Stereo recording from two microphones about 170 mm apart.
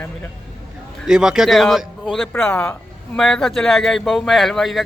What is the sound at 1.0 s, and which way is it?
Speech, 5° right (ahead or behind).